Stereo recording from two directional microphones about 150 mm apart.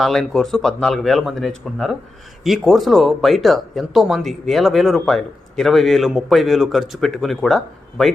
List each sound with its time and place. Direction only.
0.0 s speech: 5° left (ahead or behind)